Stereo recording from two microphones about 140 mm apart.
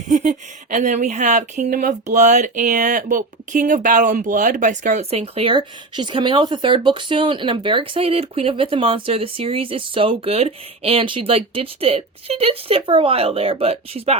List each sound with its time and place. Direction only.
0.1 s speech: 60° right (ahead or behind)